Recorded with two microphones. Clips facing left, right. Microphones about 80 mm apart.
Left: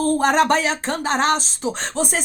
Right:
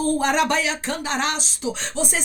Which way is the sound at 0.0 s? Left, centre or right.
Left.